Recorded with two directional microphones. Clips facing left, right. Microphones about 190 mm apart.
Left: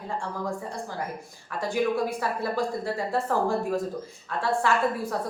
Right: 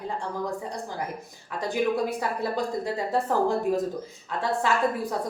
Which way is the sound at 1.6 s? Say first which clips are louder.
Even; 20° right (ahead or behind).